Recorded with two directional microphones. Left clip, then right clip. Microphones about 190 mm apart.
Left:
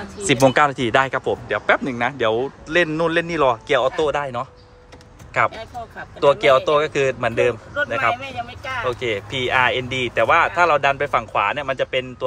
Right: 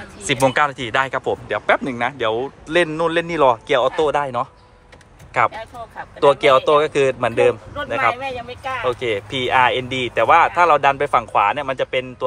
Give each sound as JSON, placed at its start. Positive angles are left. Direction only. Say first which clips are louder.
{"t": 0.2, "sound": "a man's voice", "louder": "left 1 dB", "side_deg": 20}